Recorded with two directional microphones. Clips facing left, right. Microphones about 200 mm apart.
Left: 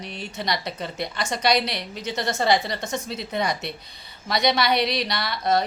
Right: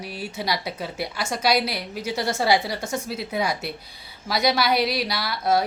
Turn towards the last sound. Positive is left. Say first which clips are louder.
# right 1 dB
turn(degrees=-5)  # may be behind; listen again after turning